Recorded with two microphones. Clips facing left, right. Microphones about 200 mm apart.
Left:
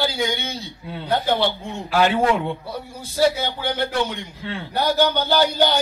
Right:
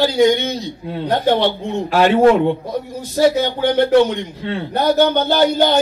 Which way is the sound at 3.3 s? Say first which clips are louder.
Right 9 dB; 55° right (ahead or behind).